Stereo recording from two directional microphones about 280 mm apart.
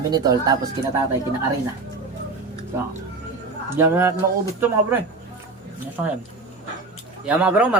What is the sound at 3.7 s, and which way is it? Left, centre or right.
Speech, centre.